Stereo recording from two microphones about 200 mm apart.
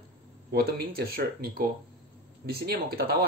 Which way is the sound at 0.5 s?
50° right (ahead or behind).